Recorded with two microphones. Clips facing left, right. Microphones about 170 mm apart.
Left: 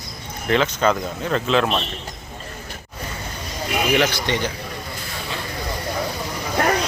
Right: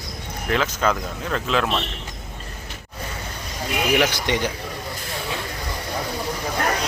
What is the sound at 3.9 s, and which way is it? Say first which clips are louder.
Speech: even; 15° right (ahead or behind).